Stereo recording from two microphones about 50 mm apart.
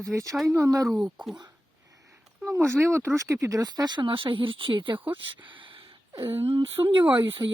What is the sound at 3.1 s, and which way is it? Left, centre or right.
Speech, right.